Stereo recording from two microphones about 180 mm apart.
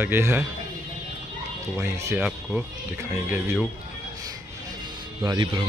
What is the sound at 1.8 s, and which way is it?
Speech, 15° right (ahead or behind).